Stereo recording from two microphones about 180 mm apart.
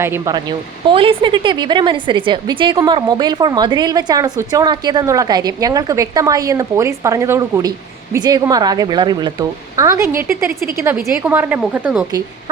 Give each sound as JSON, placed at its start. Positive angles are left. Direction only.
{"t": 0.0, "sound": "speech", "side_deg": -15}
{"t": 10.5, "sound": "a woman's voice", "side_deg": -55}
{"t": 11.1, "sound": "a woman's voice", "side_deg": -10}